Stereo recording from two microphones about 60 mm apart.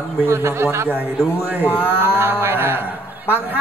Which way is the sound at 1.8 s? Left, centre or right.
Right.